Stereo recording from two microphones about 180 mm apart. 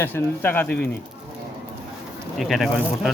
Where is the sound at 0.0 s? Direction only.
10° left (ahead or behind).